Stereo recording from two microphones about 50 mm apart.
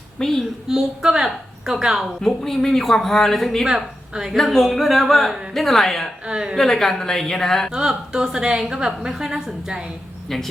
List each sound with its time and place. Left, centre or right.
0.2 s speech: centre
0.7 s a woman's voice: centre
2.1 s speech: centre
3.7 s a woman's voice: centre
4.4 s speech: centre
6.2 s a woman's voice: centre
6.6 s speech: centre
7.7 s a woman's voice: centre
10.2 s speech: centre